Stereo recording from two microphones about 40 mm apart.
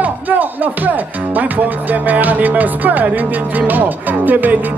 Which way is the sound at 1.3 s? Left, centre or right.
Right.